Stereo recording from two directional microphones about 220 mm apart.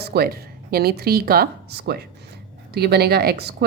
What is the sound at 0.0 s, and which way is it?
Speech, 45° right (ahead or behind).